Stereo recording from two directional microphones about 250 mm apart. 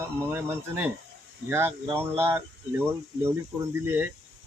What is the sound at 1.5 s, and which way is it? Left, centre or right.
Speech, centre.